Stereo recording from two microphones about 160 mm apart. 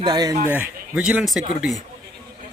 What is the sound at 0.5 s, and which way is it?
Speech, 10° right (ahead or behind).